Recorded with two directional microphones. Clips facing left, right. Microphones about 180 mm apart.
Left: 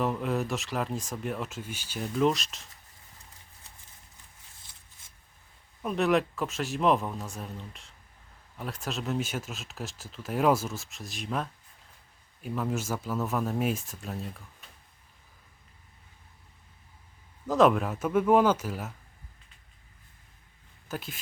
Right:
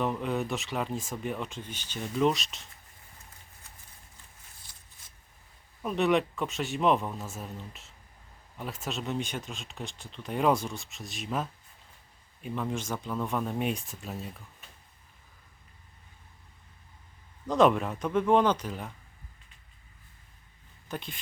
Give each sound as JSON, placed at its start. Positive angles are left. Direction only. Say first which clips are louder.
{"t": 0.0, "sound": "speech", "louder": "left 1 dB", "side_deg": 0}
{"t": 5.8, "sound": "speech", "louder": "even", "side_deg": 0}
{"t": 17.4, "sound": "speech", "louder": "left 1 dB", "side_deg": 0}
{"t": 20.8, "sound": "speech", "louder": "left 1 dB", "side_deg": 5}